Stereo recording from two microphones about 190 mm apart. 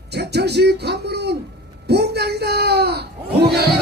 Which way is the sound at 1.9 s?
60° right (ahead or behind).